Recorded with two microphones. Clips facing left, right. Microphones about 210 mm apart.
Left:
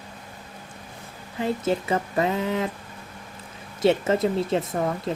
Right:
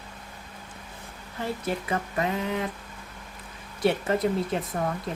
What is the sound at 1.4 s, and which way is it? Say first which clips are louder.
Speech: left 6 dB; 25° left (ahead or behind).